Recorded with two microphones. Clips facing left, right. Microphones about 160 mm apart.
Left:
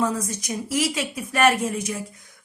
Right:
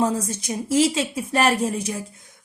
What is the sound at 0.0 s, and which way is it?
A woman's voice, 30° right (ahead or behind).